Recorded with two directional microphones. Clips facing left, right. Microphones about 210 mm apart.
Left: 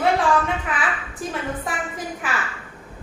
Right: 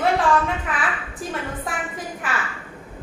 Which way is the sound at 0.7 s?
Centre (ahead or behind).